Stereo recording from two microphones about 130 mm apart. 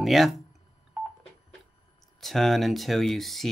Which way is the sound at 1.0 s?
10° right (ahead or behind).